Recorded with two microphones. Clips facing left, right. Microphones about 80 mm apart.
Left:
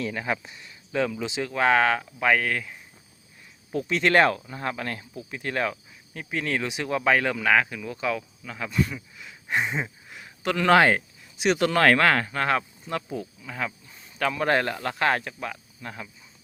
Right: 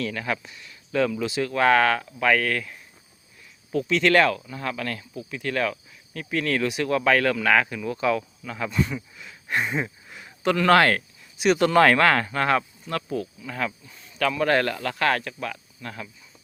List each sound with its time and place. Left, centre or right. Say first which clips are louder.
0.0 s speech: even; left
0.9 s speech: right 3 dB; centre
3.7 s speech: right 2 dB; left; by 11.0 s centre
11.4 s speech: right 3 dB; centre